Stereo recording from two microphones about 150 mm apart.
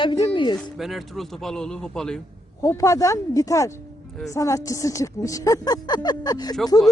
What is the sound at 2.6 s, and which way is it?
Speech, 20° left (ahead or behind).